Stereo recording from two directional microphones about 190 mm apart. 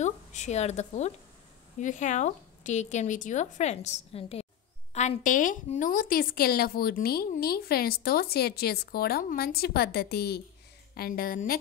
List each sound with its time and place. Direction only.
0.0 s a woman's voice: 40° left (ahead or behind)